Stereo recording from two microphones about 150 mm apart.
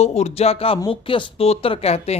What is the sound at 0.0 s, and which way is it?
Speech, 45° left (ahead or behind).